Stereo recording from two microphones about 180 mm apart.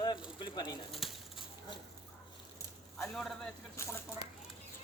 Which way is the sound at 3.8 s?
15° left (ahead or behind).